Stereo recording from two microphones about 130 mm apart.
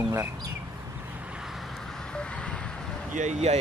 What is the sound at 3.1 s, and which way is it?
Speech, 60° right (ahead or behind).